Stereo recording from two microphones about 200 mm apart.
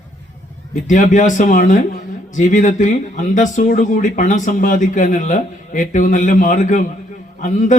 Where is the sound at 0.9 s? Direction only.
40° left (ahead or behind).